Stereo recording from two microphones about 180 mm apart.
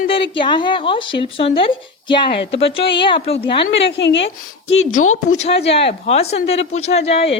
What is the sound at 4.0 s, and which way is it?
Speech, 80° left.